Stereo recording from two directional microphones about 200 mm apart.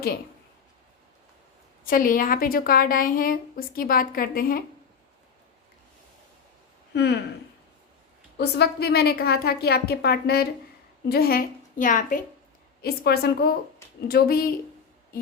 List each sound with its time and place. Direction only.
1.8 s a woman's voice: 45° left (ahead or behind)
6.9 s speech: 55° left (ahead or behind)
8.4 s a woman's voice: 55° left (ahead or behind)
12.8 s a woman's voice: 50° left (ahead or behind)